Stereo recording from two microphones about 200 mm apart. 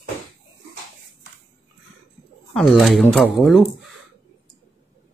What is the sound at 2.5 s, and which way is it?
Speech, centre (ahead or behind).